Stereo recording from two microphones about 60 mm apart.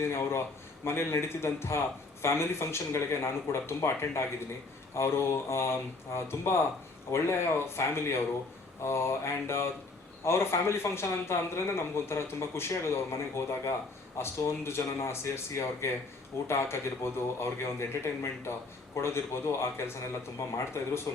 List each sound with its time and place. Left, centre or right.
0.0 s a man's voice: left